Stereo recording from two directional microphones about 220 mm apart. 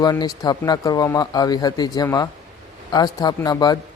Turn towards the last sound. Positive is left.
turn(degrees=20)  # may be behind; listen again after turning